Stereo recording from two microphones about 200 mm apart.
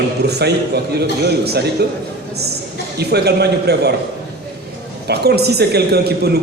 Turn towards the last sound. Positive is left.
turn(degrees=-55)  # may be behind; listen again after turning